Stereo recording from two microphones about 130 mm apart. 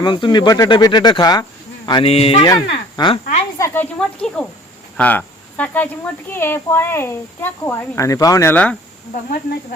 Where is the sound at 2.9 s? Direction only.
35° left (ahead or behind).